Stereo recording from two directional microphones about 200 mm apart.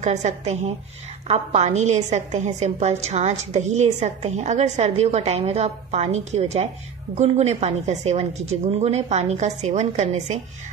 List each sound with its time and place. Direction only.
0.0 s a woman's voice: 35° right (ahead or behind)